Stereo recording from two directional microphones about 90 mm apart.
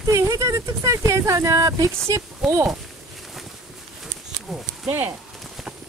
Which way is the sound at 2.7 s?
Centre (ahead or behind).